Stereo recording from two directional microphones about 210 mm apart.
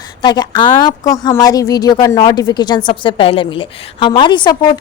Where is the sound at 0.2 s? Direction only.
20° left (ahead or behind).